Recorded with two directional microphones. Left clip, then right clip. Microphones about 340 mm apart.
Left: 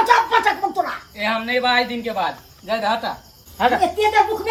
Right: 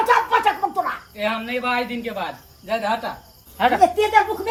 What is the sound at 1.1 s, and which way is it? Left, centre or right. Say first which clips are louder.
Speech: left 6 dB; centre.